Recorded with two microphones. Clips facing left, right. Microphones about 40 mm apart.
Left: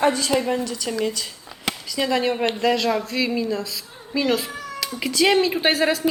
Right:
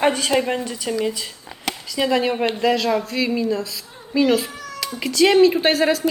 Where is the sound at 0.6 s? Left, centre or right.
Right.